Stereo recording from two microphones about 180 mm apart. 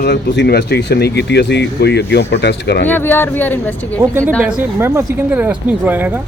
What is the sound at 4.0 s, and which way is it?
Speech, 15° right (ahead or behind).